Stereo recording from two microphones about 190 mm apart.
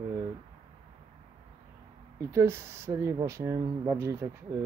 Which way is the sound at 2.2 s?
15° right (ahead or behind).